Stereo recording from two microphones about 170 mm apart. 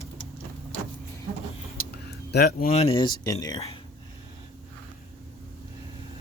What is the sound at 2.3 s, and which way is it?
Speech, 65° left (ahead or behind).